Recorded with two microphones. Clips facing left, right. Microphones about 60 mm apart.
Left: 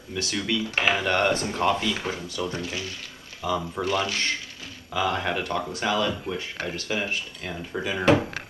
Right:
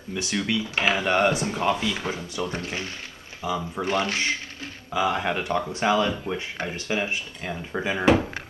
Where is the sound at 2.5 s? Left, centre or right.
Right.